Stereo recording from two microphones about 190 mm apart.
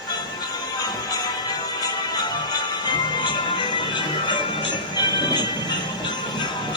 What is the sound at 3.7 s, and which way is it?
Music, 25° left (ahead or behind).